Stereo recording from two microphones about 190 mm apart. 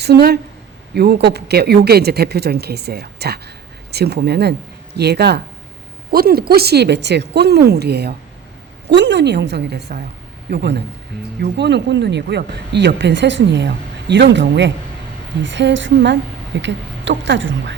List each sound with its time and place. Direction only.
0.0 s speech: 60° right (ahead or behind); by 17.7 s 75° right (ahead or behind)